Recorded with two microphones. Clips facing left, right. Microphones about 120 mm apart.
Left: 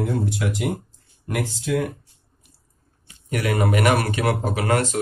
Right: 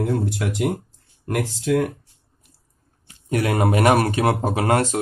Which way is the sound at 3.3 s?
35° right (ahead or behind).